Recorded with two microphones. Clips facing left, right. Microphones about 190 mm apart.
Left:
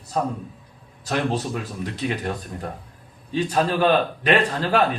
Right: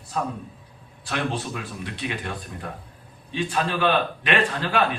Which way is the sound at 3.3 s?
40° left (ahead or behind).